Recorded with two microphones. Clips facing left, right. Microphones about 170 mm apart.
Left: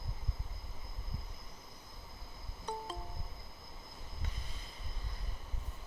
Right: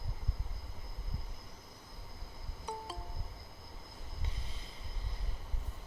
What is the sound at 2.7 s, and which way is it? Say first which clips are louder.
Music: left 1 dB; 10° right (ahead or behind).